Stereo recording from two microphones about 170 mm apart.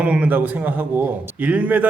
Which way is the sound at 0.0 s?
10° right (ahead or behind).